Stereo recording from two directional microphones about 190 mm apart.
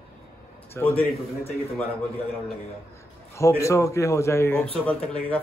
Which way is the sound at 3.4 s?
15° left (ahead or behind).